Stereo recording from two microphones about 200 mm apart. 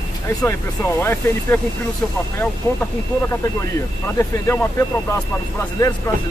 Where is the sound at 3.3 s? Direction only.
15° left (ahead or behind).